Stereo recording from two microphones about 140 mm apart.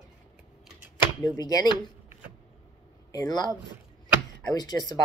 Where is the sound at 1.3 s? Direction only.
30° left (ahead or behind).